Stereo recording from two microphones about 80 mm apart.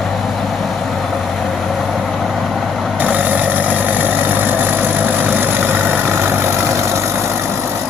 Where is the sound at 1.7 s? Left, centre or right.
Centre.